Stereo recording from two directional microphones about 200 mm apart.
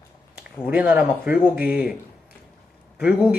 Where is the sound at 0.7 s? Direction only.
5° right (ahead or behind).